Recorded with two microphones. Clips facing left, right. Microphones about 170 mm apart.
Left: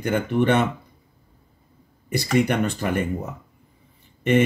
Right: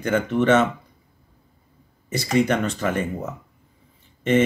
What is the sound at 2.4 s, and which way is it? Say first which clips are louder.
Speech: right 1 dB; 15° left (ahead or behind).